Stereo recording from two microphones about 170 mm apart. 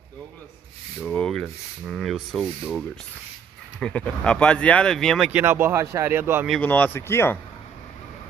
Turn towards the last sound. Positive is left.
turn(degrees=15)  # may be behind; listen again after turning